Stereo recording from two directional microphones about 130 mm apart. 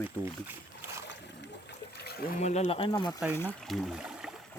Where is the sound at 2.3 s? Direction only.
60° left (ahead or behind); by 3.1 s 40° left (ahead or behind).